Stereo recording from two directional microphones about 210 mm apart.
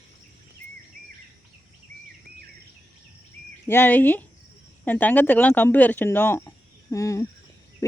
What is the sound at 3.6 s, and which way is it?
Speech, 10° left (ahead or behind).